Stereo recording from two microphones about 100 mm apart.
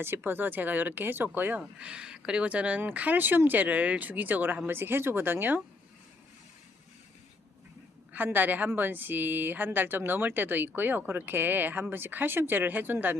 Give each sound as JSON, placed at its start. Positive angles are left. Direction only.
{"t": 0.0, "sound": "speech", "side_deg": -20}
{"t": 8.1, "sound": "a woman's voice", "side_deg": -20}